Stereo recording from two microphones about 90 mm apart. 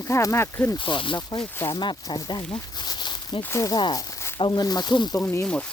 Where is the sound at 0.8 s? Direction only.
70° left (ahead or behind).